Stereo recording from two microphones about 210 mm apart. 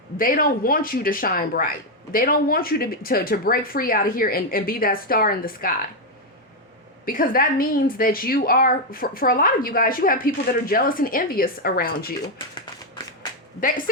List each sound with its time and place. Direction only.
0.2 s a woman's voice: 40° left (ahead or behind)
7.0 s a woman's voice: 40° left (ahead or behind)
13.6 s speech: 40° left (ahead or behind)